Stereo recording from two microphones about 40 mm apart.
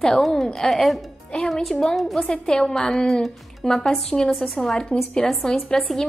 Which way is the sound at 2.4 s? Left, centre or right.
Centre.